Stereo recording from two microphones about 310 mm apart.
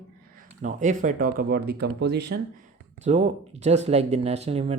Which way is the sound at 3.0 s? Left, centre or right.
Right.